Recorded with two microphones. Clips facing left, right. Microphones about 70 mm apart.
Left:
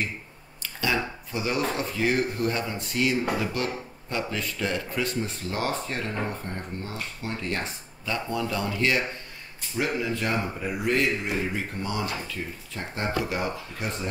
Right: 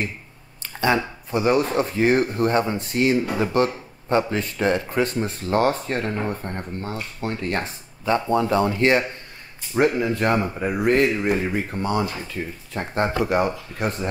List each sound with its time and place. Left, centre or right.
0.6 s speech: right